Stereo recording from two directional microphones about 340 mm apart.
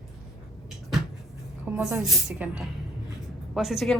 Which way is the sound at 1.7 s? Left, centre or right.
Centre.